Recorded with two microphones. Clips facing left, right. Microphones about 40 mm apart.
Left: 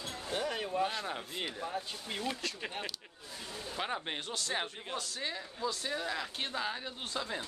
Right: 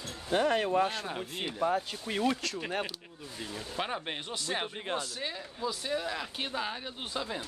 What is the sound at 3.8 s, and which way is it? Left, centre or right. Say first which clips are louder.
Speech: right 2 dB; centre.